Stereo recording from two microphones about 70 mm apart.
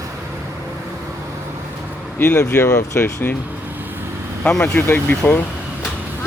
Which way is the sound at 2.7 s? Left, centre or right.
Left.